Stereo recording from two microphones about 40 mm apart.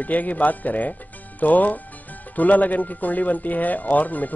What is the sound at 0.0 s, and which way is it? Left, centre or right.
Speech, left.